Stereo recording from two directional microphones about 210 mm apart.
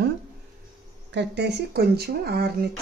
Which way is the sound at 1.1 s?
55° right (ahead or behind).